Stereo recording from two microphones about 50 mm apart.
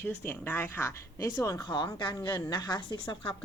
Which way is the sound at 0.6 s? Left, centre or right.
Left.